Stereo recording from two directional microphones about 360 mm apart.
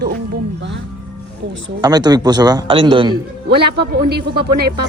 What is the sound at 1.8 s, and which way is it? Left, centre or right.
A man's voice, centre.